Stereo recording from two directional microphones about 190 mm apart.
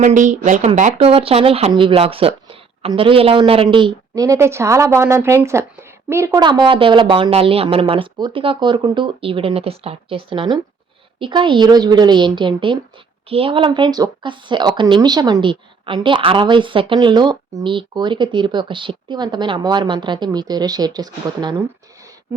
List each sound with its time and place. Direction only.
0.0 s a woman's voice: 40° right (ahead or behind); by 21.6 s 20° right (ahead or behind)